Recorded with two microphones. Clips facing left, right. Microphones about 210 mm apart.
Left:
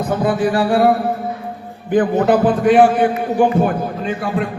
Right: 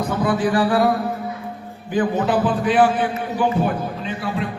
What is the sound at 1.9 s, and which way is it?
A man's voice, 55° left (ahead or behind).